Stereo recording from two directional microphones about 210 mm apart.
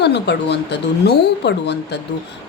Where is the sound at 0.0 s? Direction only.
55° left (ahead or behind).